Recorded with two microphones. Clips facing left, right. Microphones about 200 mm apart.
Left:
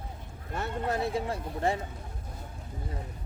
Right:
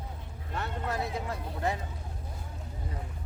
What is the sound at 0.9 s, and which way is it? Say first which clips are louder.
Speech: left 5 dB; 30° left (ahead or behind).